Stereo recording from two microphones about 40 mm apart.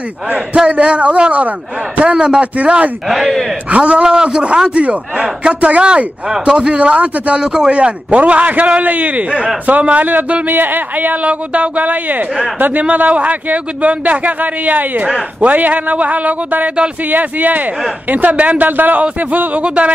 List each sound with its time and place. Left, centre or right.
0.7 s a man's voice: right
3.1 s a man's voice: centre
3.7 s a man's voice: right
7.4 s a man's voice: centre
7.7 s a man's voice: right
11.2 s a man's voice: right
12.8 s a man's voice: right
18.7 s a man's voice: right